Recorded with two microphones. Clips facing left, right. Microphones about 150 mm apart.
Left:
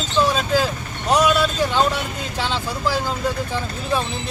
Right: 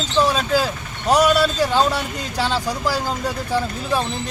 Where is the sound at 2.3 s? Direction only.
40° right (ahead or behind).